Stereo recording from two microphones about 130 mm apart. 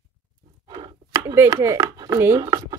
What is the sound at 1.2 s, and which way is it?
Speech, 25° right (ahead or behind).